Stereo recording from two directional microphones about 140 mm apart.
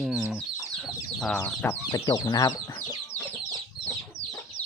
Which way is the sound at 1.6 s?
25° left (ahead or behind).